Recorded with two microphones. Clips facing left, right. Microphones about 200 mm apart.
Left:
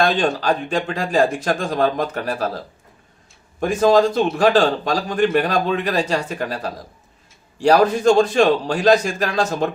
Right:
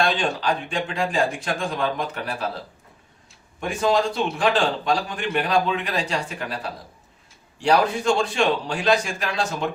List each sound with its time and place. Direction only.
0.0 s speech: 40° left (ahead or behind)
3.6 s a man's voice: 40° left (ahead or behind)